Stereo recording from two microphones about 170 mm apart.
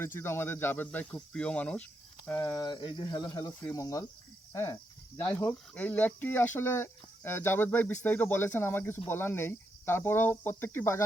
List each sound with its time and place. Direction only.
0.0 s speech: 15° left (ahead or behind)
2.4 s speech: 20° left (ahead or behind)